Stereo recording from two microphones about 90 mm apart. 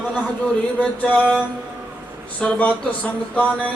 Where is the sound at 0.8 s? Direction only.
15° left (ahead or behind).